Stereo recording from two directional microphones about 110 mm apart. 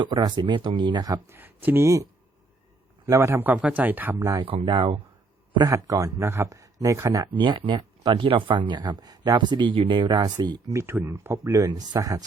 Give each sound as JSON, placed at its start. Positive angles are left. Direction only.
{"t": 0.0, "sound": "speech", "side_deg": -45}
{"t": 1.3, "sound": "speech", "side_deg": -15}
{"t": 3.1, "sound": "speech", "side_deg": -25}
{"t": 4.4, "sound": "speech", "side_deg": -55}
{"t": 5.7, "sound": "speech", "side_deg": -30}
{"t": 10.7, "sound": "speech", "side_deg": -25}